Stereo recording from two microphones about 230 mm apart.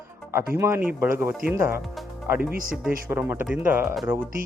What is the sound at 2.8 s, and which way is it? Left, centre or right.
Speech, centre.